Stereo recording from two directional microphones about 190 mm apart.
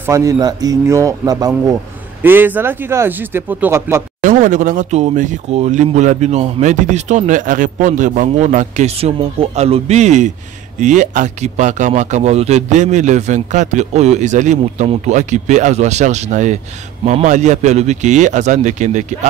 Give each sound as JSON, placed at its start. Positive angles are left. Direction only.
{"t": 0.0, "sound": "speech", "side_deg": -15}
{"t": 4.2, "sound": "speech", "side_deg": -45}